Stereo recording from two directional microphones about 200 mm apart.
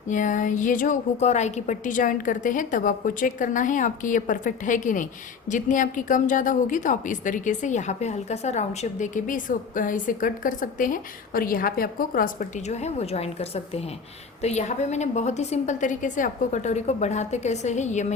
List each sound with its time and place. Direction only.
0.1 s a woman's voice: 40° left (ahead or behind)